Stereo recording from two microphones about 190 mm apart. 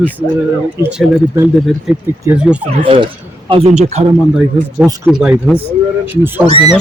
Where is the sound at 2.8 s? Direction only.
25° right (ahead or behind).